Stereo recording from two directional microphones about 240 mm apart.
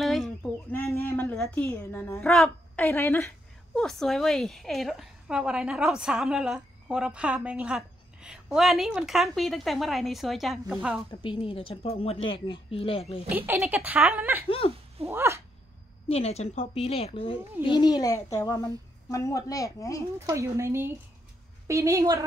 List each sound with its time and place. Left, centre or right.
0.0 s speech: centre
11.1 s a woman's voice: left
13.5 s a woman's voice: centre
14.6 s a woman's voice: left
15.0 s a woman's voice: centre
16.1 s a woman's voice: left
20.2 s a woman's voice: centre